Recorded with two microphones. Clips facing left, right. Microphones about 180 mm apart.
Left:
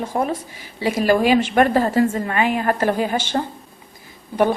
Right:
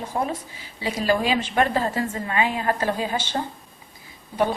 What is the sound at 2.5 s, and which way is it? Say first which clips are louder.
A woman's voice: left 5 dB; 55° left (ahead or behind).